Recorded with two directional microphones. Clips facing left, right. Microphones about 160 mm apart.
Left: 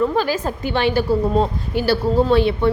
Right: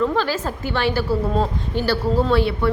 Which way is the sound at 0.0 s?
15° left (ahead or behind).